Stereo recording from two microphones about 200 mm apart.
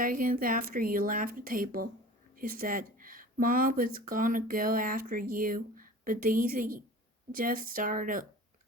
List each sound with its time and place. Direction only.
0.0 s speech: 45° right (ahead or behind)